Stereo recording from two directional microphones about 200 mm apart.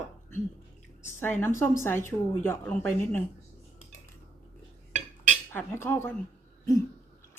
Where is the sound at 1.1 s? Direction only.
10° left (ahead or behind).